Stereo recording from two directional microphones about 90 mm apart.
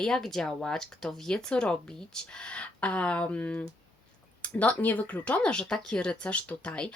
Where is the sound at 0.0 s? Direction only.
5° left (ahead or behind).